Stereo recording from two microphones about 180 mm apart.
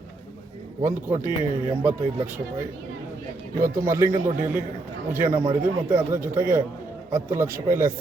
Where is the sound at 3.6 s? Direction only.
15° right (ahead or behind).